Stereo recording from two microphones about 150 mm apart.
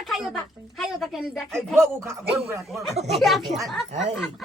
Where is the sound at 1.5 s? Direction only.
20° right (ahead or behind).